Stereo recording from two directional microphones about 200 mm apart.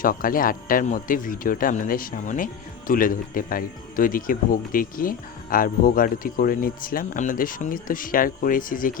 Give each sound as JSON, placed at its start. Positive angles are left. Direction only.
{"t": 0.0, "sound": "speech", "side_deg": 45}